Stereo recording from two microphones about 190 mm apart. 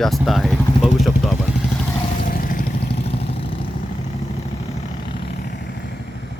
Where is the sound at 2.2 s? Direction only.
45° left (ahead or behind).